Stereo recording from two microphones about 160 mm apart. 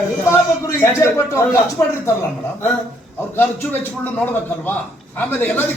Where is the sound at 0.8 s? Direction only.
15° left (ahead or behind).